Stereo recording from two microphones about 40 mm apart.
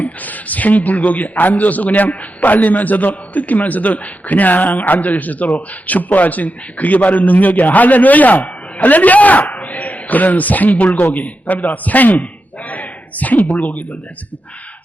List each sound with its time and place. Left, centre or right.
0.0 s a man's voice: left